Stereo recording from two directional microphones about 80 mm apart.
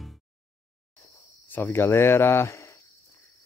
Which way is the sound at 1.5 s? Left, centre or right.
Left.